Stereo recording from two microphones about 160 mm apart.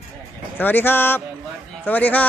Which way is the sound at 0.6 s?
10° left (ahead or behind).